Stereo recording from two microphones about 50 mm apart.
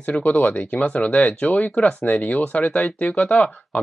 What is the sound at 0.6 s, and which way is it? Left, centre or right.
Speech, left.